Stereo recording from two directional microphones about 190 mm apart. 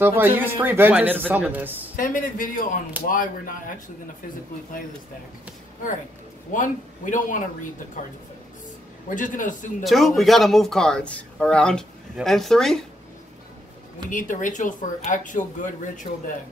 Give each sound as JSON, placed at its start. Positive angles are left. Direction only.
{"t": 0.0, "sound": "speech", "side_deg": -10}
{"t": 2.0, "sound": "speech", "side_deg": 45}
{"t": 6.5, "sound": "speech", "side_deg": 45}
{"t": 9.1, "sound": "speech", "side_deg": 45}
{"t": 9.8, "sound": "speech", "side_deg": 0}
{"t": 14.1, "sound": "speech", "side_deg": 45}